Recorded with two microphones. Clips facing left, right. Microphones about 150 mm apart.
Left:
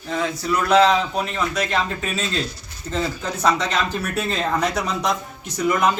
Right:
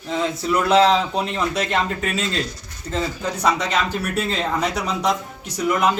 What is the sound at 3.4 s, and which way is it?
Speech, 10° right (ahead or behind).